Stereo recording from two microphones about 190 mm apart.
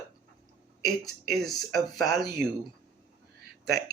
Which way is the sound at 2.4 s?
55° right (ahead or behind).